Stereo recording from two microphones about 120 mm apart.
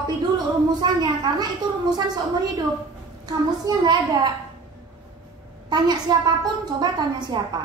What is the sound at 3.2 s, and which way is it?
Speech, 35° right (ahead or behind).